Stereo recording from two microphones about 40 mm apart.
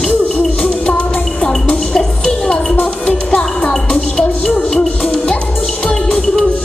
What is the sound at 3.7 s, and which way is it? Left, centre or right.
Music, centre.